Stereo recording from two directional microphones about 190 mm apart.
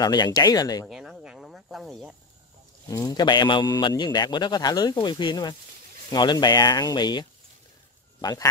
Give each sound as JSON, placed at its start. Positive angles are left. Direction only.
{"t": 0.0, "sound": "a man's voice", "side_deg": 20}
{"t": 0.8, "sound": "cricket", "side_deg": 0}
{"t": 2.9, "sound": "a man's voice", "side_deg": 20}